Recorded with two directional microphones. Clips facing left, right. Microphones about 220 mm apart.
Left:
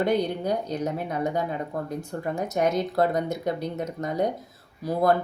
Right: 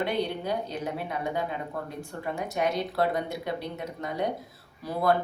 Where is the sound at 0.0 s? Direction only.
45° left (ahead or behind).